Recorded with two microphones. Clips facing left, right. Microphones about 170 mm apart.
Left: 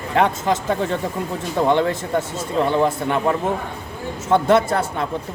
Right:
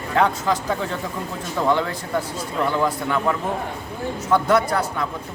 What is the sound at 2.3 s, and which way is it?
A man's voice, 25° left (ahead or behind).